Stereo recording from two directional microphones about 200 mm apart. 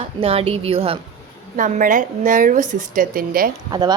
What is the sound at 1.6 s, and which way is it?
A woman's voice, 40° right (ahead or behind).